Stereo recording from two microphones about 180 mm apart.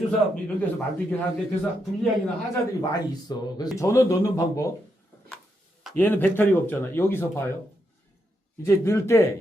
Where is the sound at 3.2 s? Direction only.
20° left (ahead or behind).